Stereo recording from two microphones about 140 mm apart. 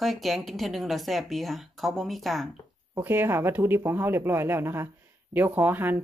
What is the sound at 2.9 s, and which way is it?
Speech, 15° right (ahead or behind).